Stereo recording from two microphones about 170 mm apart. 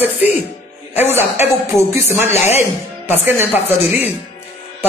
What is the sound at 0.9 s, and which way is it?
Speech, 10° right (ahead or behind).